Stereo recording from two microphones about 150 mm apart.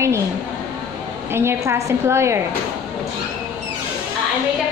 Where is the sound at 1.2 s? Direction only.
15° right (ahead or behind).